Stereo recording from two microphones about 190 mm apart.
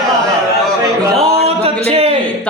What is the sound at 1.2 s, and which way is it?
Music, 35° right (ahead or behind).